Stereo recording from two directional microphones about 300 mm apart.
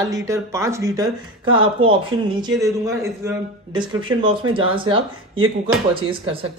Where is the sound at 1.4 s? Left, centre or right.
Right.